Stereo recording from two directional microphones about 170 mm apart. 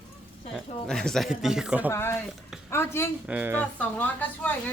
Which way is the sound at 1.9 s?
15° left (ahead or behind).